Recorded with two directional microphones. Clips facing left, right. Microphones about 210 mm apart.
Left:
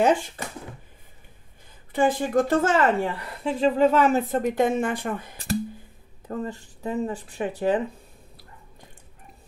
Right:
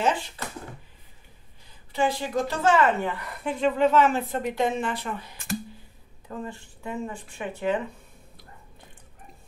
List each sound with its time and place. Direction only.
0.0 s a woman's voice: 50° left (ahead or behind)
1.9 s a woman's voice: 50° left (ahead or behind)